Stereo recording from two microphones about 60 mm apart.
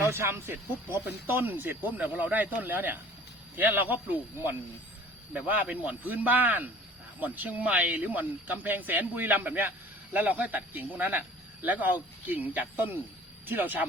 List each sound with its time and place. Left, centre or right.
0.0 s speech: right